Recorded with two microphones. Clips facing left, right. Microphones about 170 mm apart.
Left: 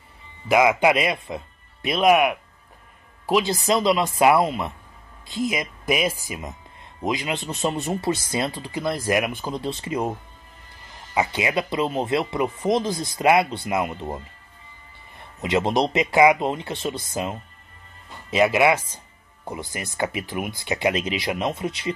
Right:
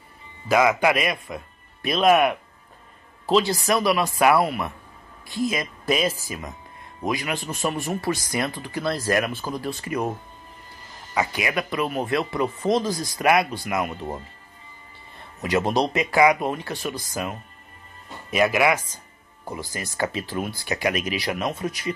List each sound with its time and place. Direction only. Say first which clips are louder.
0.5 s speech: left 1 dB; 20° left (ahead or behind)
11.1 s speech: left 2 dB; 25° left (ahead or behind)
15.1 s speech: left 1 dB; 20° left (ahead or behind)